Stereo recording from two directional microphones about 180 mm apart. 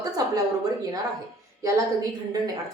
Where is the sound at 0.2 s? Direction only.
20° right (ahead or behind).